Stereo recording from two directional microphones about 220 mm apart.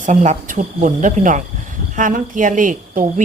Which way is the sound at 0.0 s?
35° right (ahead or behind).